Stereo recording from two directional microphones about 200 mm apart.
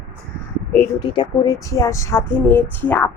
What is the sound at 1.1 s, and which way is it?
A woman's voice, 20° left (ahead or behind).